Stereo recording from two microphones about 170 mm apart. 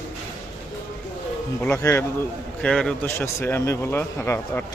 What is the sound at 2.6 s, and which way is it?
Speech, 5° left (ahead or behind).